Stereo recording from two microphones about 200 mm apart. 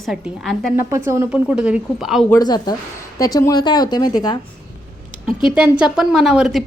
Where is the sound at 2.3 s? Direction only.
20° left (ahead or behind).